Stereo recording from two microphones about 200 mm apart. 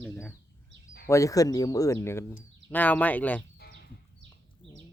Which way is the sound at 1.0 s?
15° left (ahead or behind).